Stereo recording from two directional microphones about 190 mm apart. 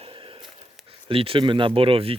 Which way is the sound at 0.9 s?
30° right (ahead or behind).